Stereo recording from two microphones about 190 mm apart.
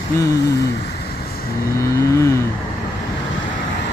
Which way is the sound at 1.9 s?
15° left (ahead or behind).